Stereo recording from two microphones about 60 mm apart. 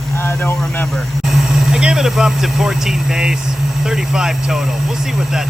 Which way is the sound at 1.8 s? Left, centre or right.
Centre.